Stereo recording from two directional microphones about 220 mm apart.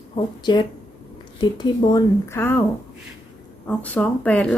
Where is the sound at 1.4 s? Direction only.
20° left (ahead or behind).